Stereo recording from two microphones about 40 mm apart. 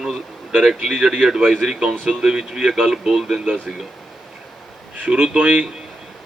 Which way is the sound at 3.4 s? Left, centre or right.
Right.